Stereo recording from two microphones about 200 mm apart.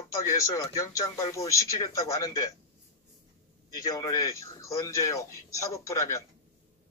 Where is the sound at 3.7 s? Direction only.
20° left (ahead or behind).